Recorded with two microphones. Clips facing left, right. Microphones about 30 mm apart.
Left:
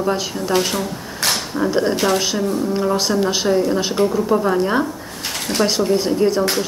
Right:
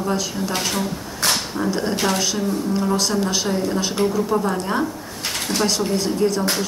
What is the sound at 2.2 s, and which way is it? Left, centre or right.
Speech, centre.